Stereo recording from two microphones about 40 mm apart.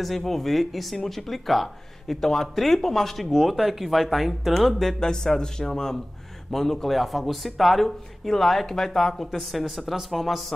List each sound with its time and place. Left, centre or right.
0.0 s speech: centre